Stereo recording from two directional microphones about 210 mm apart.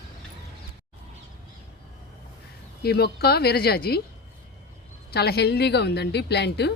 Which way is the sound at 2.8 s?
50° left (ahead or behind).